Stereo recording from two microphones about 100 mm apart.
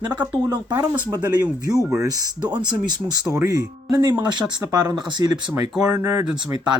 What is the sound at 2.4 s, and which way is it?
Speech, 45° right (ahead or behind).